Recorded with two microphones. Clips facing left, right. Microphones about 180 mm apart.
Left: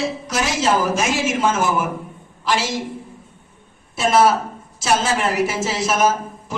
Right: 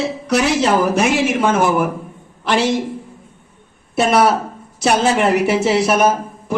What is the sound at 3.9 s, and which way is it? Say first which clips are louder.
A man's voice: right 2 dB; 60° right (ahead or behind).